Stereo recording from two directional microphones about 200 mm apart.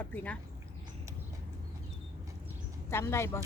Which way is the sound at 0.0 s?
5° left (ahead or behind).